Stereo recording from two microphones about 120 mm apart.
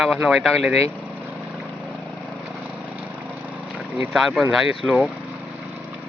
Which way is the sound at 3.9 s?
5° right (ahead or behind).